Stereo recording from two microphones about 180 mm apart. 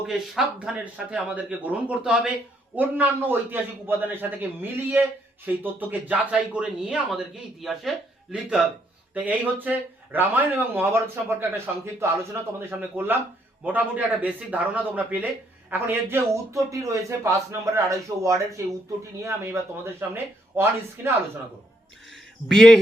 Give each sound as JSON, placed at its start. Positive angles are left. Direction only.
{"t": 0.1, "sound": "speech", "side_deg": -5}
{"t": 20.0, "sound": "speech", "side_deg": -10}
{"t": 22.1, "sound": "a sound", "side_deg": 0}